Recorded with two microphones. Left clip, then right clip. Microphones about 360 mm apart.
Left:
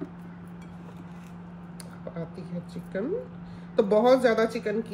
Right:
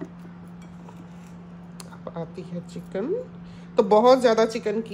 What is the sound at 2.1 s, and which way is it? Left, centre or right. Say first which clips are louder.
A woman's voice: right 4 dB; centre.